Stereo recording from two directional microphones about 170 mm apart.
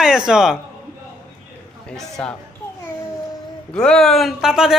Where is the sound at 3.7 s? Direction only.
5° left (ahead or behind).